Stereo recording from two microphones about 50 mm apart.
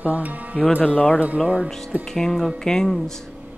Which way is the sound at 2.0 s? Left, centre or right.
Centre.